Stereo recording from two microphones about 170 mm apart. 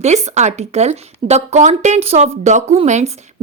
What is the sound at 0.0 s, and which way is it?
Speech, 40° right (ahead or behind).